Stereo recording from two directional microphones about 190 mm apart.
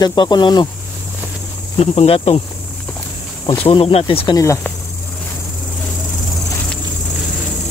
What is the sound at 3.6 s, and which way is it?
Speech, 30° left (ahead or behind).